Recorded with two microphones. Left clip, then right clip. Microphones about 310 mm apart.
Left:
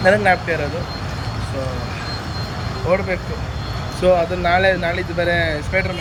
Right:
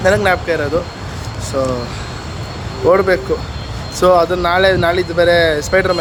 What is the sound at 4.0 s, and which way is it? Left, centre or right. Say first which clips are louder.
Speech: right 5 dB; centre.